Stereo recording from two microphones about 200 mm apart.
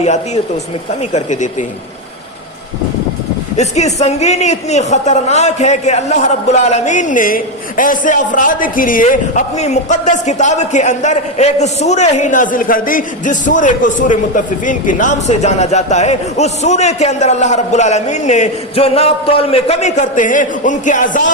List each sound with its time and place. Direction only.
1.1 s a man's voice: 35° left (ahead or behind)
3.6 s a man's voice: 35° left (ahead or behind)